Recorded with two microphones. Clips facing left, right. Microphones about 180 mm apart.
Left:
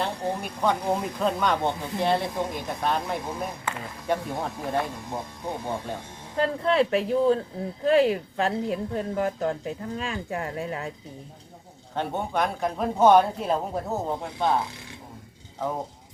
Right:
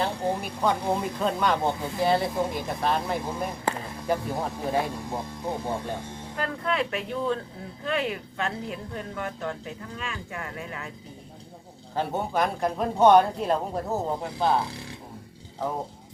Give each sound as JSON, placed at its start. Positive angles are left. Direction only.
{"t": 0.0, "sound": "speech", "side_deg": 0}
{"t": 6.3, "sound": "a woman's voice", "side_deg": 30}
{"t": 11.9, "sound": "speech", "side_deg": 0}